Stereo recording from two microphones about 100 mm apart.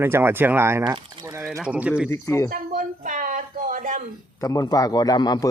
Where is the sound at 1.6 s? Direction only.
15° right (ahead or behind).